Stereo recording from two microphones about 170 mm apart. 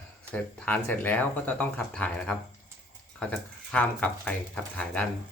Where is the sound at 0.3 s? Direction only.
10° left (ahead or behind).